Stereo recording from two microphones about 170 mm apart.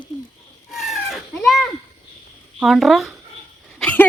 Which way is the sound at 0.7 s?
Centre (ahead or behind).